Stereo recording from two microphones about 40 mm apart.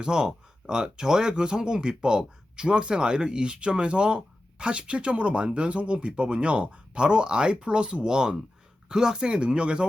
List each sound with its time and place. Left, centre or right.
0.0 s speech: centre